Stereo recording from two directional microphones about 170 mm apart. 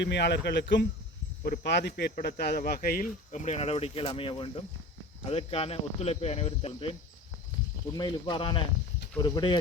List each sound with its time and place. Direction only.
0.0 s speech: 90° left
2.1 s speech: 70° left (ahead or behind); by 6.9 s 35° left (ahead or behind)
7.9 s speech: 25° left (ahead or behind)